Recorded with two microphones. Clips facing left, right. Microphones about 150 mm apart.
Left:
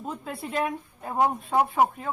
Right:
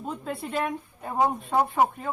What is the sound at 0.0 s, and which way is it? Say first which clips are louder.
A woman's voice: right 2 dB; centre (ahead or behind).